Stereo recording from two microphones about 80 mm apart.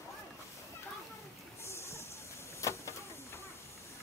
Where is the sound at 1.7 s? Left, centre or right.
Left.